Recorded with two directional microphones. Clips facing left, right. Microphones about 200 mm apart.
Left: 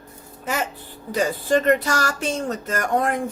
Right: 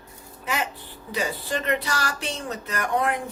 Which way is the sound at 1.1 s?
45° left (ahead or behind).